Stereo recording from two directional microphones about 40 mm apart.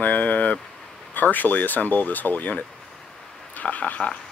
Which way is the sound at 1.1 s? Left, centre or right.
Left.